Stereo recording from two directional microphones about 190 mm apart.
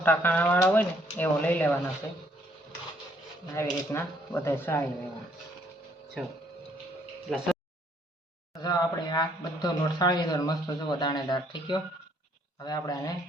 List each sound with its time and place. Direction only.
0.0 s speech: 10° left (ahead or behind)
3.5 s speech: 10° left (ahead or behind)
7.3 s speech: centre (ahead or behind)
8.5 s speech: 20° left (ahead or behind)